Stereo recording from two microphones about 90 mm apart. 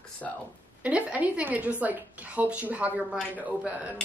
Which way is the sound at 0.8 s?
15° right (ahead or behind).